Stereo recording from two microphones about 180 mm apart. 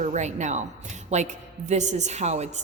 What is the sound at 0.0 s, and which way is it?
A woman's voice, 40° right (ahead or behind).